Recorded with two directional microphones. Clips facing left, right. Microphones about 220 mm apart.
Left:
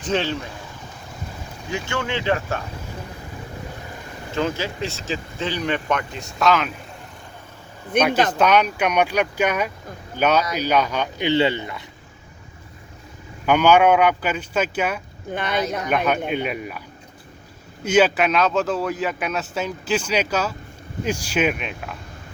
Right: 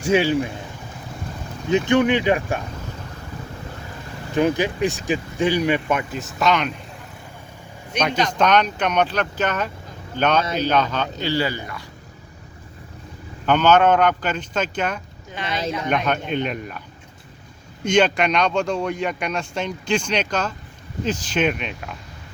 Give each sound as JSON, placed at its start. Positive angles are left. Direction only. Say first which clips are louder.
{"t": 0.0, "sound": "speech", "louder": "right 5 dB", "side_deg": -10}
{"t": 1.7, "sound": "speech", "louder": "right 9 dB", "side_deg": -20}
{"t": 4.4, "sound": "speech", "louder": "right 5 dB", "side_deg": -15}
{"t": 7.9, "sound": "a man's voice", "louder": "left 3 dB", "side_deg": 5}
{"t": 13.4, "sound": "a man's voice", "louder": "left 1 dB", "side_deg": 10}
{"t": 15.3, "sound": "speech", "louder": "left 4 dB", "side_deg": 55}
{"t": 15.9, "sound": "a man's voice", "louder": "even", "side_deg": 5}
{"t": 17.8, "sound": "a man's voice", "louder": "left 1 dB", "side_deg": 5}